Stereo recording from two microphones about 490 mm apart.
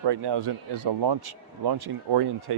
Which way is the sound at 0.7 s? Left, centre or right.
Right.